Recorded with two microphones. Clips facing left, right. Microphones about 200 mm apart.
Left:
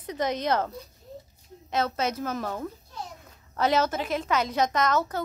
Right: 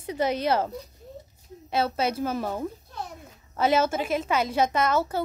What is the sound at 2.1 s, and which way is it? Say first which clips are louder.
Speech: right 3 dB; 30° right (ahead or behind).